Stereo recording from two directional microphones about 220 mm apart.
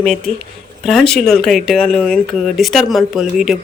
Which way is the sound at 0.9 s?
Centre (ahead or behind).